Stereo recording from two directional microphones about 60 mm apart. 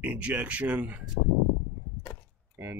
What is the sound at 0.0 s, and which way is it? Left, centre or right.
Speech, right.